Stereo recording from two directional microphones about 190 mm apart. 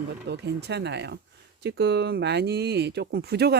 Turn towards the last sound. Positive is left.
turn(degrees=-60)  # may be behind; listen again after turning